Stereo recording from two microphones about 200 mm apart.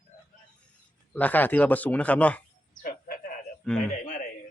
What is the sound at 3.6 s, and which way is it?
Speech, 5° left (ahead or behind).